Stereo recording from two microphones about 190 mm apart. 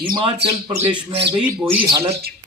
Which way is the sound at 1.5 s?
15° right (ahead or behind).